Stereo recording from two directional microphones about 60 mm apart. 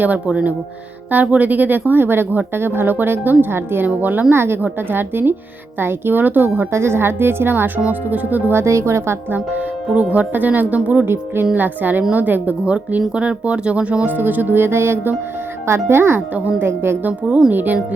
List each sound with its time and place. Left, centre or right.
0.0 s a woman's voice: right
3.8 s a woman's voice: right
6.7 s a woman's voice: right
7.8 s speech: right
8.5 s a child's voice: right
9.3 s speech: right
11.0 s a woman's voice: right
16.3 s speech: right
16.6 s a child's voice: right
17.0 s a woman's voice: right